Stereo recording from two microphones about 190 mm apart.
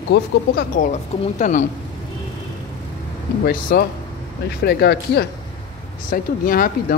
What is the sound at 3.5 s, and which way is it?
Speech, 50° left (ahead or behind).